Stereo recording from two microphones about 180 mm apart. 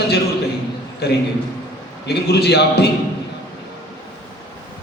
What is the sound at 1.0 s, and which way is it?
A man's voice, 65° left (ahead or behind).